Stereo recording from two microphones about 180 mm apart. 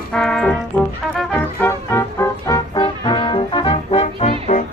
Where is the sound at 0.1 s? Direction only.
5° left (ahead or behind).